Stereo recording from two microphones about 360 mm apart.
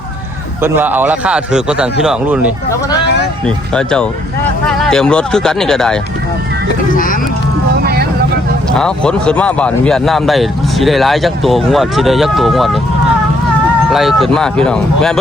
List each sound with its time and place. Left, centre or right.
0.6 s speech: centre
6.9 s vehicle: left
8.8 s speech: centre
13.9 s speech: centre